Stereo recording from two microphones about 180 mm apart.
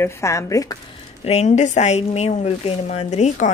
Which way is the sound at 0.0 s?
15° left (ahead or behind).